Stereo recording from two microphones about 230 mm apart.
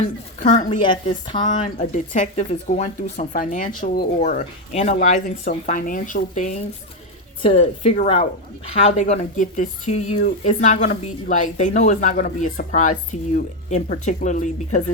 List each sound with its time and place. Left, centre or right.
0.3 s a woman's voice: left
0.7 s a woman's voice: left
1.5 s a woman's voice: left